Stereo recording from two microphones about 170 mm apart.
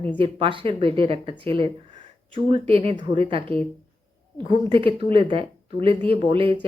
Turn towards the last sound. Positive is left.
turn(degrees=-30)  # may be behind; listen again after turning